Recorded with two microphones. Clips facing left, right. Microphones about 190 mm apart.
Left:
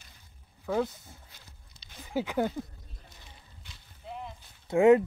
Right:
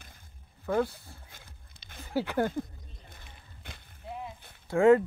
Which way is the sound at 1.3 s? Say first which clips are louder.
Right 3 dB; 55° right (ahead or behind).